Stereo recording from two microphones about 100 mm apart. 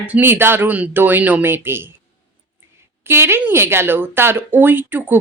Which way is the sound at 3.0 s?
25° right (ahead or behind).